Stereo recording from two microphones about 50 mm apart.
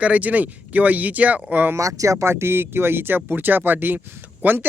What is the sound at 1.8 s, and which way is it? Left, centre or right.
Speech, right.